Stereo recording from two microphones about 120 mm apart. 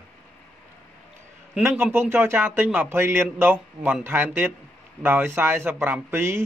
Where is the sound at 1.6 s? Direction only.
20° right (ahead or behind).